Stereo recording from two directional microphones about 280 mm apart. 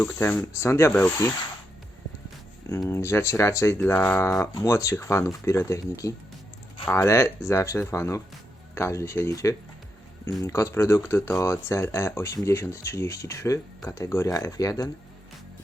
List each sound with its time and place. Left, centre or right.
0.0 s speech: centre
2.6 s speech: centre